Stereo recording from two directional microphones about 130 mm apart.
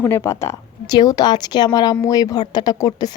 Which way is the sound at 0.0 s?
20° left (ahead or behind).